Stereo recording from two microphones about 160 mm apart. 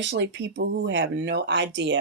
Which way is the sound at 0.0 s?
90° right.